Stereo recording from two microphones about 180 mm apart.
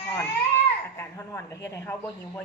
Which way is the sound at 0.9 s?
15° left (ahead or behind).